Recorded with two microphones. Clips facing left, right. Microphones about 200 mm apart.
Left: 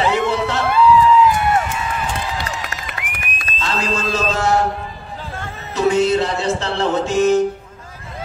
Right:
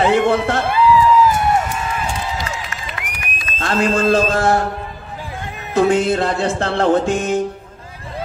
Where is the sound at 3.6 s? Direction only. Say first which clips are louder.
Right 5 dB; 55° right (ahead or behind).